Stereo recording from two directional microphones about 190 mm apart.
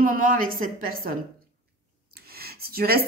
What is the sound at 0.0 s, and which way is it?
Speech, 45° right (ahead or behind).